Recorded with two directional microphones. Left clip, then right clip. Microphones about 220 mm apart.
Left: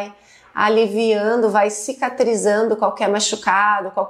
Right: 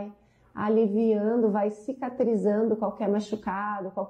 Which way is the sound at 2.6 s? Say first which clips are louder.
Left 9 dB; 25° left (ahead or behind).